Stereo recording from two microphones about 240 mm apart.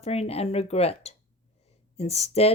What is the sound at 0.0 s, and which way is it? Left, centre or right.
Speech, left.